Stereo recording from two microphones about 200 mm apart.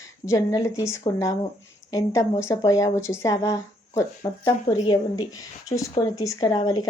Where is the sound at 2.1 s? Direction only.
15° left (ahead or behind).